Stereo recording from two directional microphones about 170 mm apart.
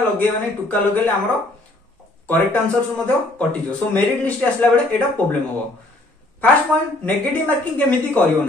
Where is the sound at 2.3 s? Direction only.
10° left (ahead or behind).